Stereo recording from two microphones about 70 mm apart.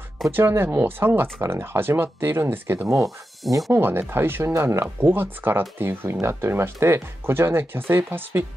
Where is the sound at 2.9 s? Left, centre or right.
Right.